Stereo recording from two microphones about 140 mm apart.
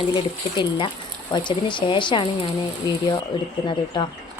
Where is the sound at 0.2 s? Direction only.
30° left (ahead or behind).